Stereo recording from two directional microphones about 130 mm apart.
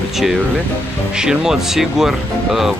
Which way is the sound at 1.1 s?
5° right (ahead or behind).